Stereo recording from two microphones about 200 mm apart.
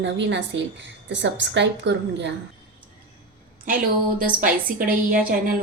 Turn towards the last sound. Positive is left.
turn(degrees=-45)  # may be behind; listen again after turning